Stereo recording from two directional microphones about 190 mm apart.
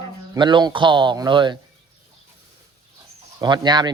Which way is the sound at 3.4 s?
20° right (ahead or behind).